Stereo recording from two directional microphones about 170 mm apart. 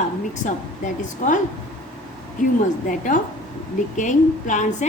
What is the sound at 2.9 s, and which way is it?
Speech, 50° left (ahead or behind).